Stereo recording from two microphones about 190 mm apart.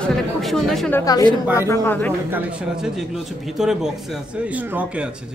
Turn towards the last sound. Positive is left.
turn(degrees=-5)  # may be behind; listen again after turning